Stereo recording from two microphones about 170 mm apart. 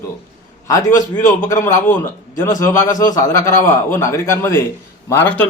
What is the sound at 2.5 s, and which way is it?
A man's voice, 20° left (ahead or behind).